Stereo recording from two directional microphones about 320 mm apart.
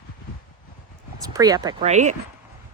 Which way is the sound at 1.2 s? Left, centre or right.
Centre.